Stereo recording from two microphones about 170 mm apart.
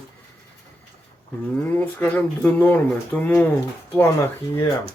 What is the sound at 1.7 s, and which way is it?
Speech, 10° left (ahead or behind).